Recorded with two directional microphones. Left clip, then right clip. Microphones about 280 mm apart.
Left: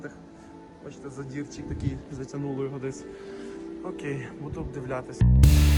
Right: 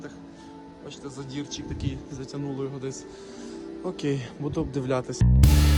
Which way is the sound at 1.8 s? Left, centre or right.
Centre.